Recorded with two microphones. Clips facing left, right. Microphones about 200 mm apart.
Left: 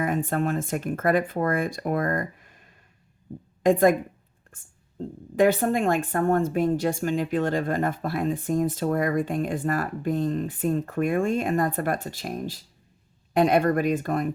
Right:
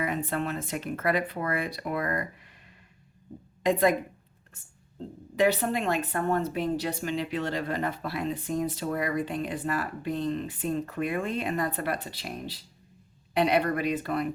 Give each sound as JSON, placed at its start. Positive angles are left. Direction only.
{"t": 0.0, "sound": "speech", "side_deg": 45}
{"t": 3.6, "sound": "speech", "side_deg": 50}